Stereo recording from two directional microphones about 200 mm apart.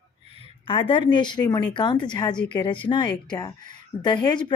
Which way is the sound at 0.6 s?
25° left (ahead or behind).